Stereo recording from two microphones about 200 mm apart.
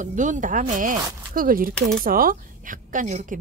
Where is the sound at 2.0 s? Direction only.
45° right (ahead or behind).